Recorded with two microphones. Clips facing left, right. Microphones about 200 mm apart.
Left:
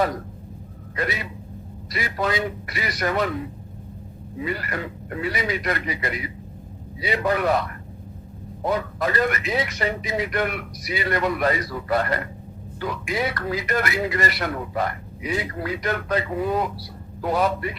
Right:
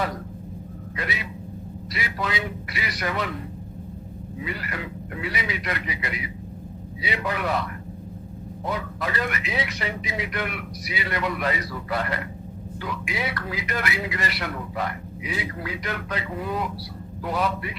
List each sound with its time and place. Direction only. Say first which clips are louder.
0.9 s a man's voice: left 5 dB; 45° left (ahead or behind)
4.4 s a man's voice: left 5 dB; 45° left (ahead or behind)
8.6 s a man's voice: left 6 dB; 45° left (ahead or behind)